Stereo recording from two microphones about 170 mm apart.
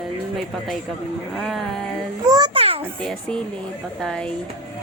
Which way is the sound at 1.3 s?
Centre (ahead or behind).